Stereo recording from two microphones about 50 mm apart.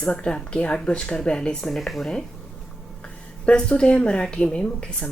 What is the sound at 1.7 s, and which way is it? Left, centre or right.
Speech, centre.